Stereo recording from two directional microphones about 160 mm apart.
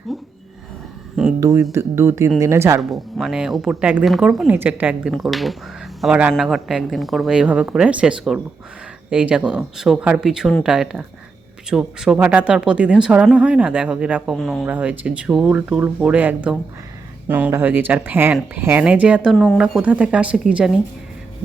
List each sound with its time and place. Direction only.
0.1 s a sound: centre (ahead or behind)
1.4 s speech: 15° right (ahead or behind)
2.9 s speech: centre (ahead or behind)